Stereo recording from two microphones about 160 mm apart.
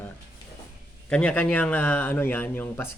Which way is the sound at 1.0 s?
5° left (ahead or behind).